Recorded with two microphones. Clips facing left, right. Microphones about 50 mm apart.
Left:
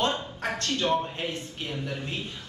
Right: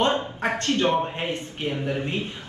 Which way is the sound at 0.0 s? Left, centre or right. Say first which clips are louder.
Right 5 dB; right.